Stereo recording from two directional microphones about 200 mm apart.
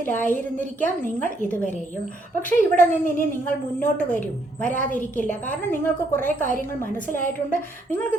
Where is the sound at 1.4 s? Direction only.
10° left (ahead or behind).